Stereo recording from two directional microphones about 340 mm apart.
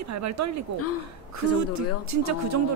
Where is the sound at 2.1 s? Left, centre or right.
Right.